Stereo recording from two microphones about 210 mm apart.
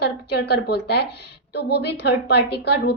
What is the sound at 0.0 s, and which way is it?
A woman's voice, 50° left (ahead or behind).